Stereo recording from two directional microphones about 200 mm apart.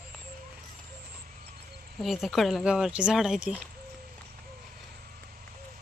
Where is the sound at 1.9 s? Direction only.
Centre (ahead or behind).